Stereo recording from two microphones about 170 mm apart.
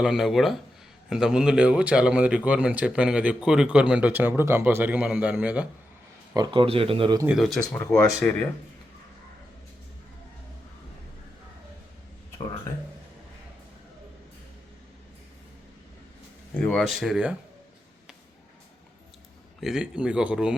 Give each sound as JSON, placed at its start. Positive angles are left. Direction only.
{"t": 0.0, "sound": "speech", "side_deg": 0}
{"t": 6.3, "sound": "speech", "side_deg": -25}
{"t": 7.3, "sound": "speech", "side_deg": 0}
{"t": 16.6, "sound": "speech", "side_deg": 5}
{"t": 19.5, "sound": "speech", "side_deg": -5}